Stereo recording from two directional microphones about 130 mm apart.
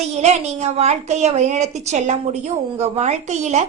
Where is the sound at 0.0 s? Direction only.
60° right (ahead or behind).